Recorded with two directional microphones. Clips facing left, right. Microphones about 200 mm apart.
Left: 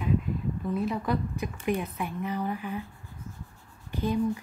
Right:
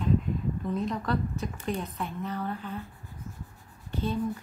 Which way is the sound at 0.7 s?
5° left (ahead or behind).